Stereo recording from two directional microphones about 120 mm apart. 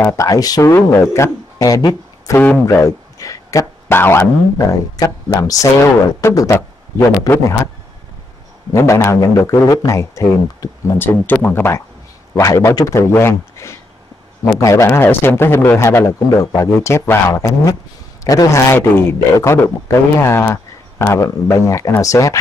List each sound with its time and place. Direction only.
0.0 s a man's voice: 25° left (ahead or behind)
2.3 s speech: 15° left (ahead or behind)
2.6 s a man's voice: 25° left (ahead or behind)
8.7 s a man's voice: 25° left (ahead or behind)